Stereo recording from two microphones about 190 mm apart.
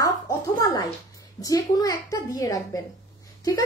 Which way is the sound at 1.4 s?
20° left (ahead or behind).